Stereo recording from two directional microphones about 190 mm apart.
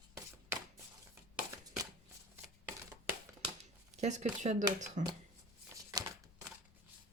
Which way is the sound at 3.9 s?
40° right (ahead or behind).